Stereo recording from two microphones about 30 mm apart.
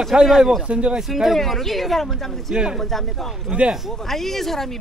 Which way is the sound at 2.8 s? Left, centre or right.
Centre.